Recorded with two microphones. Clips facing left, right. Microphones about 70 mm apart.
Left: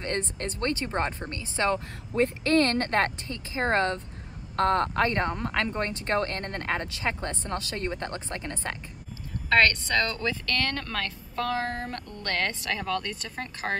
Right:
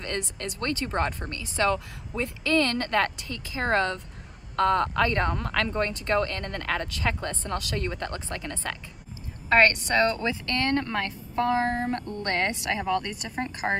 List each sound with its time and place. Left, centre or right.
0.0 s a woman's voice: left
2.1 s a woman's voice: left
9.5 s a woman's voice: right